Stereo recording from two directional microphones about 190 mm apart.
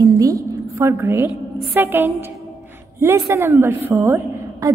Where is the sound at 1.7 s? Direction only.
10° right (ahead or behind).